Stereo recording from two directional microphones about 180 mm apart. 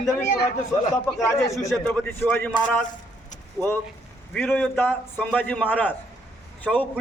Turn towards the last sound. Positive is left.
turn(degrees=10)  # may be behind; listen again after turning